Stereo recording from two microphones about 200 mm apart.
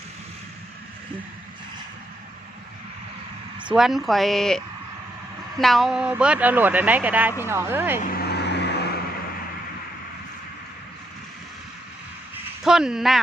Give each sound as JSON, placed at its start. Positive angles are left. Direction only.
{"t": 3.7, "sound": "speech", "side_deg": 0}
{"t": 8.0, "sound": "vehicle", "side_deg": 55}
{"t": 12.6, "sound": "speech", "side_deg": 0}